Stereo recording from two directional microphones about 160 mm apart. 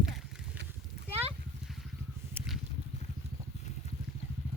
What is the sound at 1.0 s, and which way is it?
Horse, 90° right.